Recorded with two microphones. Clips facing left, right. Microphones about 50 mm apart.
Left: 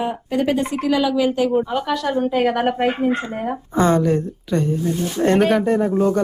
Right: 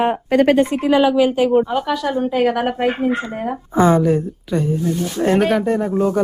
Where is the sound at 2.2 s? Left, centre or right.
Centre.